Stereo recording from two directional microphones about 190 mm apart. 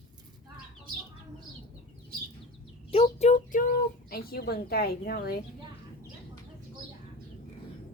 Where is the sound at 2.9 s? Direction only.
30° left (ahead or behind); by 5.4 s 55° left (ahead or behind).